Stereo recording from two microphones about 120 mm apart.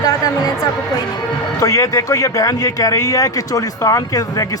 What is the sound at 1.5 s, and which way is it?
Speech, 25° left (ahead or behind).